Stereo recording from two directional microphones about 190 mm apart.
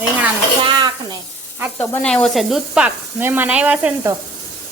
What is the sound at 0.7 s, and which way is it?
Speech, 20° right (ahead or behind).